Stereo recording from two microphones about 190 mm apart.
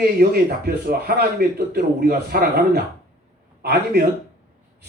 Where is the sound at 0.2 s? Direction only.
55° right (ahead or behind).